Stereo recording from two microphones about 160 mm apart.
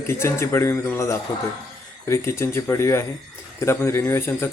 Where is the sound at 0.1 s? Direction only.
15° left (ahead or behind).